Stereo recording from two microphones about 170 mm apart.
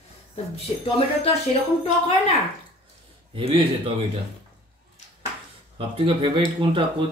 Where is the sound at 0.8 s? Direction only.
30° left (ahead or behind).